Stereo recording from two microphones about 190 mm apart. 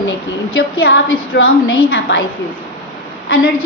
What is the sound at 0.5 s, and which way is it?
Speech, 75° left (ahead or behind).